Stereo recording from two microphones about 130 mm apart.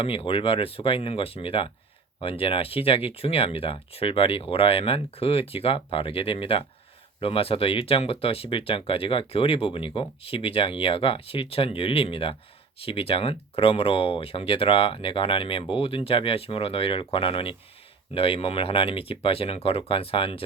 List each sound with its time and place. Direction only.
0.0 s speech: 45° left (ahead or behind)